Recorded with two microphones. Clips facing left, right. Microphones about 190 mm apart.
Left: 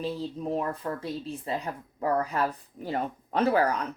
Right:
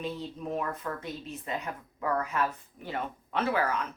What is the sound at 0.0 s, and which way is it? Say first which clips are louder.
A woman's voice: left 4 dB; 30° left (ahead or behind).